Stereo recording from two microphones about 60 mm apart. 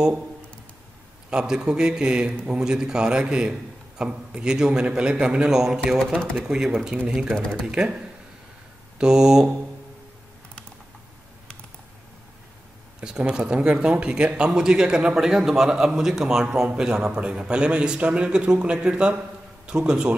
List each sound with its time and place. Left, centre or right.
1.3 s speech: centre
7.3 s speech: centre
7.6 s speech: centre
13.0 s speech: centre